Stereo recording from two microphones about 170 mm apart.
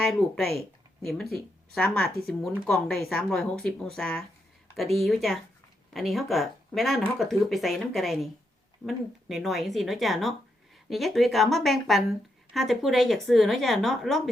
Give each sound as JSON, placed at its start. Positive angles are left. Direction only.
{"t": 0.0, "sound": "a woman's voice", "side_deg": 0}